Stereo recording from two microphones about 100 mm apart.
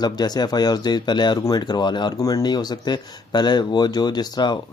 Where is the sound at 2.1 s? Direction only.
35° left (ahead or behind).